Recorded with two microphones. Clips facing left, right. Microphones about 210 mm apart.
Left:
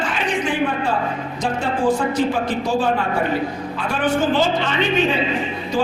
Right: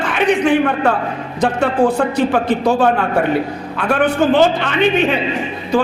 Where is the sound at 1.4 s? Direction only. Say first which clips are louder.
Right 6 dB; 60° right (ahead or behind).